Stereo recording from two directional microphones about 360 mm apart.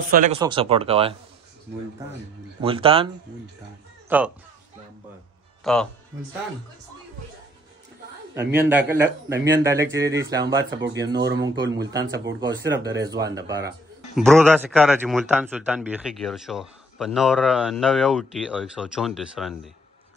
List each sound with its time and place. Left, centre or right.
0.1 s speech: right
2.6 s speech: centre
4.1 s a man's voice: centre
5.6 s a man's voice: centre
8.4 s speech: centre
11.1 s speech: right
11.4 s a man's voice: centre